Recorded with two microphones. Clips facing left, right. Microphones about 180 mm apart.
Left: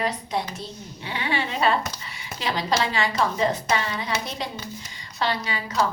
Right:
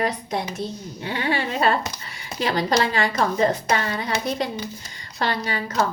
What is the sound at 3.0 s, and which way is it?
A woman's voice, 45° right (ahead or behind).